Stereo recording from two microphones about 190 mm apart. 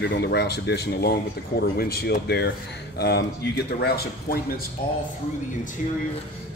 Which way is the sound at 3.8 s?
55° left (ahead or behind).